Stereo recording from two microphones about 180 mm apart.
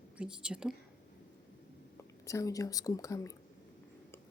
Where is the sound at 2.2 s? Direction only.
20° left (ahead or behind).